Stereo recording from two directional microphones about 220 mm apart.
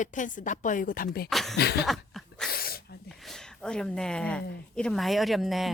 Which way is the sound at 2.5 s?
45° left (ahead or behind).